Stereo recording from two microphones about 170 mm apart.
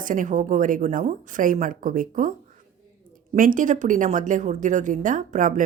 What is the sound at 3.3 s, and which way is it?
A woman's voice, 50° right (ahead or behind).